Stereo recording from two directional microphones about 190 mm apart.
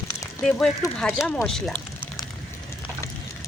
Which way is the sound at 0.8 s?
15° left (ahead or behind).